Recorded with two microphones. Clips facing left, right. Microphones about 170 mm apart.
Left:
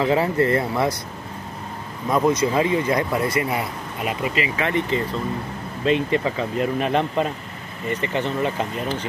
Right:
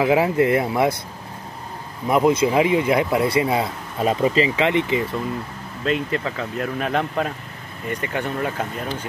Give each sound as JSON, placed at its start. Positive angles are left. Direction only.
{"t": 0.0, "sound": "speech", "side_deg": -10}
{"t": 2.0, "sound": "speech", "side_deg": -15}
{"t": 4.6, "sound": "speech", "side_deg": -15}
{"t": 5.9, "sound": "speech", "side_deg": 0}